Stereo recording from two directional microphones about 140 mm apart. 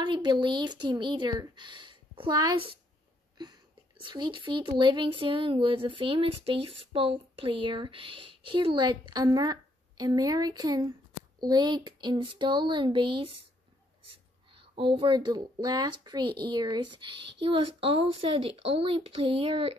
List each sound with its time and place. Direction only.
0.0 s speech: 35° right (ahead or behind)
4.0 s speech: 35° right (ahead or behind)